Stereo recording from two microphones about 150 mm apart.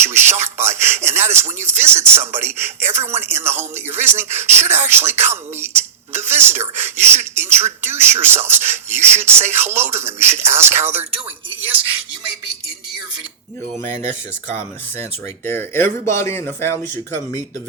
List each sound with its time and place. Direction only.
0.0 s a sound: 15° right (ahead or behind)
2.0 s speech: 15° right (ahead or behind)
15.4 s speech: 15° left (ahead or behind)